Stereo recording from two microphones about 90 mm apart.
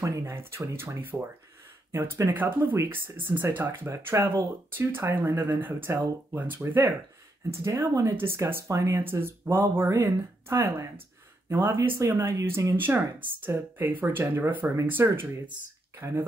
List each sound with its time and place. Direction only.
0.0 s speech: 35° right (ahead or behind)